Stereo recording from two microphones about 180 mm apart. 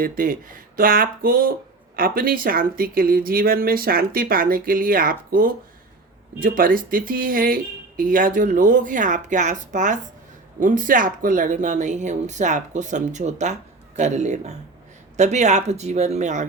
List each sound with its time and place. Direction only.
0.0 s speech: 50° right (ahead or behind)